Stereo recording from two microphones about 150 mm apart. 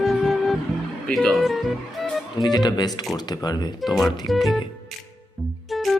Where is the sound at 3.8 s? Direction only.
Centre (ahead or behind).